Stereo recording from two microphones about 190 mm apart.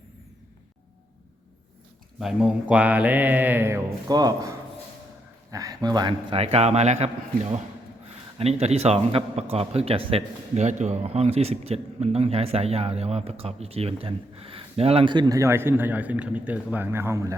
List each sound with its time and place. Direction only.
2.1 s mantra: centre (ahead or behind)
4.1 s speech: 20° right (ahead or behind); by 7.1 s 35° right (ahead or behind)
8.4 s speech: 35° right (ahead or behind); by 17.3 s 15° right (ahead or behind)